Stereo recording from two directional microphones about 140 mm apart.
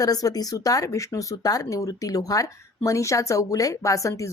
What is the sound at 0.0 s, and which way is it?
Speech, 25° left (ahead or behind).